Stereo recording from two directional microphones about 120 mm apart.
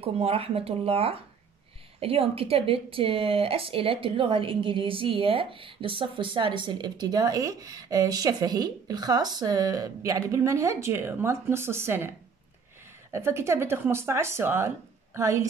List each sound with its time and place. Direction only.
0.0 s speech: 55° right (ahead or behind); by 12.1 s 20° right (ahead or behind)
13.1 s speech: 20° right (ahead or behind)